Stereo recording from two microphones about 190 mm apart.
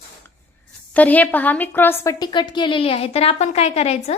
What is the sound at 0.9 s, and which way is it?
A woman's voice, 10° left (ahead or behind).